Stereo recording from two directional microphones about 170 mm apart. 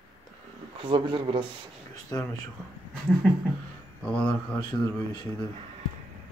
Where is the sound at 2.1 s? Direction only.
20° left (ahead or behind).